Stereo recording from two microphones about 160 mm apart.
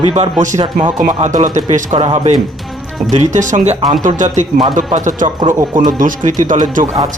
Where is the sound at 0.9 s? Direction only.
55° right (ahead or behind).